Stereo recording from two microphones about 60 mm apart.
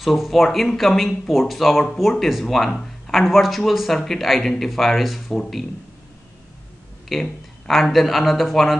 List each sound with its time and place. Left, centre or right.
0.0 s speech: centre
7.1 s speech: centre